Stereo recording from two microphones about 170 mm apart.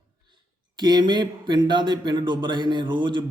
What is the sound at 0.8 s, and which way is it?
A man's voice, 25° right (ahead or behind).